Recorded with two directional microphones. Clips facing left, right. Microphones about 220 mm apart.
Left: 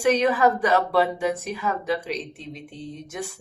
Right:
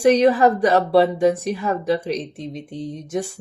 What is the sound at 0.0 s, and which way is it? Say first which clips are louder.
Speech: right 5 dB; 35° right (ahead or behind).